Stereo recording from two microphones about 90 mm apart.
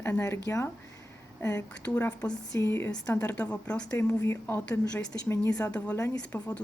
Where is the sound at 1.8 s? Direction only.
15° left (ahead or behind).